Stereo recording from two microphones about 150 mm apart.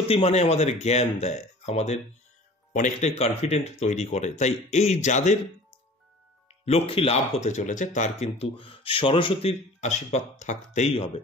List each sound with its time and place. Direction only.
0.1 s speech: 45° left (ahead or behind)
6.6 s speech: 40° left (ahead or behind)
8.5 s speech: 35° left (ahead or behind)